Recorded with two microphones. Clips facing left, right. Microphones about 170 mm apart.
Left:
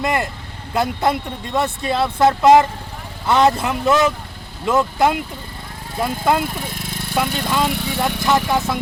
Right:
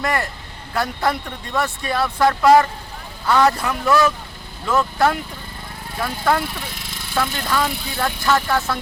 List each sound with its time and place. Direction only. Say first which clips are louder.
0.0 s speech: left 2 dB; 20° left (ahead or behind)